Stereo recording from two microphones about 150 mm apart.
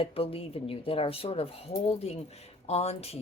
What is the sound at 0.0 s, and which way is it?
Speech, 40° left (ahead or behind).